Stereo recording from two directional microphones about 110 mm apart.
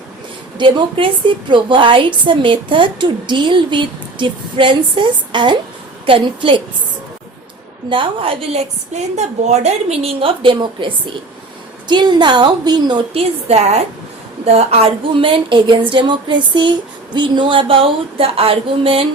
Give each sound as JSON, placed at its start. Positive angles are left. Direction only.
{"t": 0.6, "sound": "a woman's voice", "side_deg": -50}
{"t": 7.9, "sound": "a woman's voice", "side_deg": -50}
{"t": 13.1, "sound": "a woman's voice", "side_deg": -80}
{"t": 14.4, "sound": "a woman's voice", "side_deg": -65}